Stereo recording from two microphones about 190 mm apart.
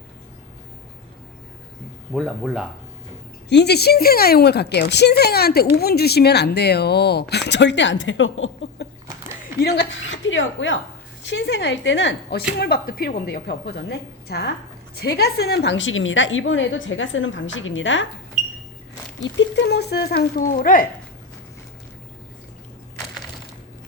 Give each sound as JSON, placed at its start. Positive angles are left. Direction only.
{"t": 2.1, "sound": "speech", "side_deg": 0}
{"t": 3.5, "sound": "speech", "side_deg": 60}
{"t": 9.6, "sound": "a woman's voice", "side_deg": 60}
{"t": 11.3, "sound": "speech", "side_deg": 65}
{"t": 12.5, "sound": "a woman's voice", "side_deg": 55}
{"t": 18.4, "sound": "a sound", "side_deg": 0}
{"t": 19.2, "sound": "speech", "side_deg": 70}